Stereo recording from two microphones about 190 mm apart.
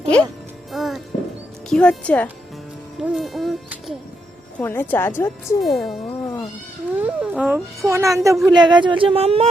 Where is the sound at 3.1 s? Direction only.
Centre (ahead or behind).